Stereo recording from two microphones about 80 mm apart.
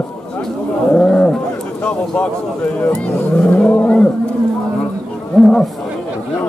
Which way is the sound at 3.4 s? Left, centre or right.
Centre.